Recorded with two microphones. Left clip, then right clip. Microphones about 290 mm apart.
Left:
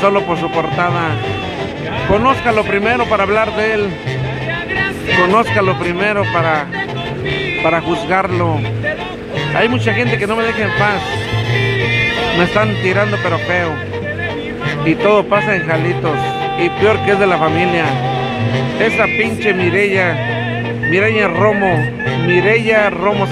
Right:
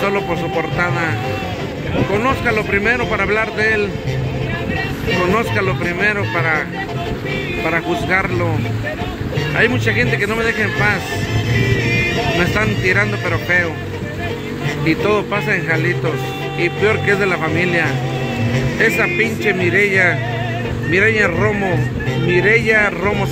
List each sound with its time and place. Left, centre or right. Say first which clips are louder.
0.0 s speech: left 5 dB; centre
2.2 s a man's voice: left 4 dB; centre
5.9 s a man's voice: left 1 dB; centre
7.6 s speech: left 3 dB; centre
9.6 s a man's voice: left 1 dB; centre
11.5 s music: left 2 dB; left
12.4 s a man's voice: left 3 dB; centre
14.9 s a man's voice: left 5 dB; centre
19.1 s speech: left 2 dB; centre